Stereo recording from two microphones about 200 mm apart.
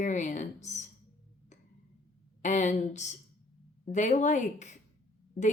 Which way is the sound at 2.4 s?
35° left (ahead or behind).